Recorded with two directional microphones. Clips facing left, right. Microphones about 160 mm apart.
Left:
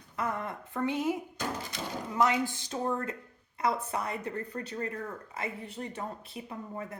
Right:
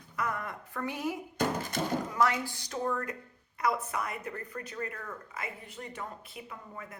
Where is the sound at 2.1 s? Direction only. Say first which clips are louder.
Left 4 dB; 20° left (ahead or behind).